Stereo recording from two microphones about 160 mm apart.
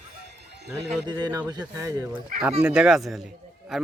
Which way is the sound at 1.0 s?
25° right (ahead or behind).